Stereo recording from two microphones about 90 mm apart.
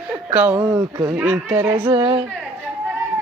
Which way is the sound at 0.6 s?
45° right (ahead or behind).